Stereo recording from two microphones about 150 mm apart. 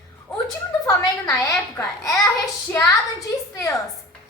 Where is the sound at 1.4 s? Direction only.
20° left (ahead or behind).